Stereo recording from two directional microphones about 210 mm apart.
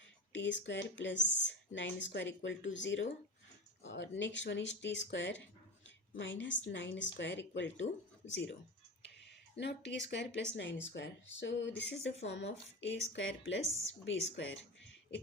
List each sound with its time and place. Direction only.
0.3 s speech: 60° left (ahead or behind)
9.6 s speech: 55° left (ahead or behind)